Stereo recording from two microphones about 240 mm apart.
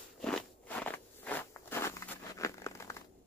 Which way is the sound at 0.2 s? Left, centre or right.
Centre.